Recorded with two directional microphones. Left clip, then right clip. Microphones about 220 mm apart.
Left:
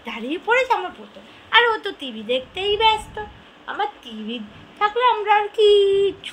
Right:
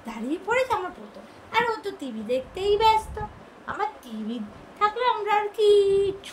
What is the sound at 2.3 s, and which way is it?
A woman's voice, centre (ahead or behind).